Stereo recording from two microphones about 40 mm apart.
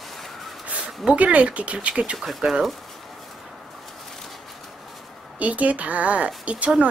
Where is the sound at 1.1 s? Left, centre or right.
Right.